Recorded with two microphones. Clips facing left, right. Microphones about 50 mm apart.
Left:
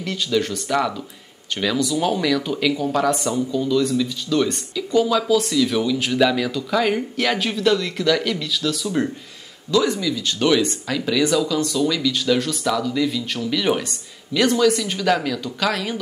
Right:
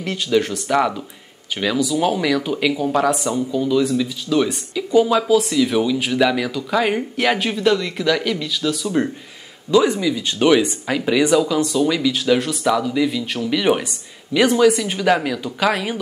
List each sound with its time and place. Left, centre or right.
0.0 s speech: centre
9.7 s speech: centre